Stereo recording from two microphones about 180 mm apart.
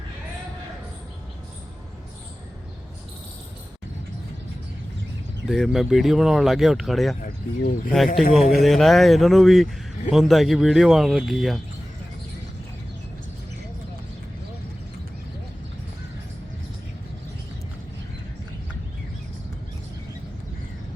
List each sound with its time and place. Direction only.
5.5 s speech: centre (ahead or behind)
7.2 s speech: 50° left (ahead or behind)
7.9 s speech: centre (ahead or behind)